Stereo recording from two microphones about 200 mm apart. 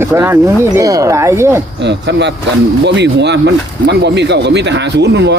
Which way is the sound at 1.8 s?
60° right (ahead or behind).